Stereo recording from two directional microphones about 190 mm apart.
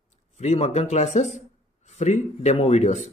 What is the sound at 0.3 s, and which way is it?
Speech, 35° left (ahead or behind).